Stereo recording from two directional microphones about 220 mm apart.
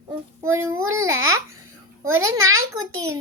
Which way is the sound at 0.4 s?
15° right (ahead or behind).